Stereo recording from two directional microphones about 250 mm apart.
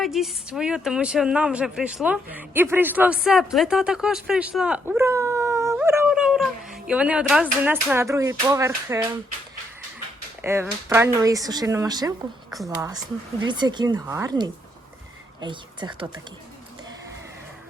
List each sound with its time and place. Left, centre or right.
0.0 s a woman's voice: centre
10.4 s speech: centre